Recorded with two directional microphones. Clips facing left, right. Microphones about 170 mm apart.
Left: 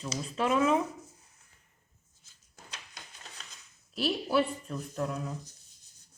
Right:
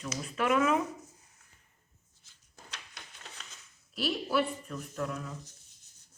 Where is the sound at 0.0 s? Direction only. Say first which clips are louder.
Left 1 dB; 30° left (ahead or behind).